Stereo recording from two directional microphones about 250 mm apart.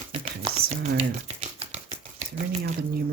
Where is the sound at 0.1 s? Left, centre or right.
Right.